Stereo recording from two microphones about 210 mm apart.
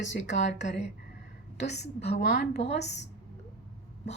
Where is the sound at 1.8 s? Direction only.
50° left (ahead or behind).